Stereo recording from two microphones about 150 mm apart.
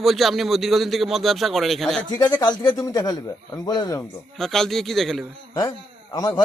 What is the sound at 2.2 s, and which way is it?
Speech, 30° left (ahead or behind).